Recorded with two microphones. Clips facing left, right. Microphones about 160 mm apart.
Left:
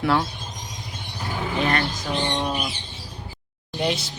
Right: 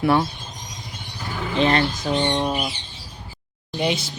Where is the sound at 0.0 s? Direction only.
5° right (ahead or behind).